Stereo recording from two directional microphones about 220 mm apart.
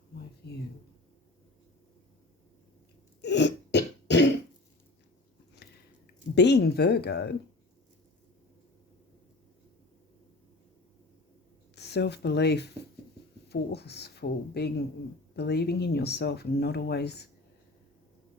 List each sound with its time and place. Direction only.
3.2 s throat clearing: 50° left (ahead or behind)
5.6 s biting: 45° left (ahead or behind)
6.3 s speech: 50° left (ahead or behind)
11.7 s speech: 50° left (ahead or behind)